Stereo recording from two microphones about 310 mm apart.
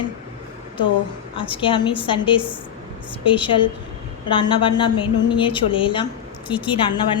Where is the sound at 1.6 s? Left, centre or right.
Centre.